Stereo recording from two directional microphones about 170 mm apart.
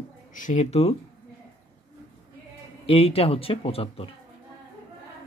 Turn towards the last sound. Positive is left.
turn(degrees=35)  # may be behind; listen again after turning